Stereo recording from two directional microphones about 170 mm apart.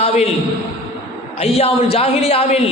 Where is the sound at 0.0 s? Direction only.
40° left (ahead or behind).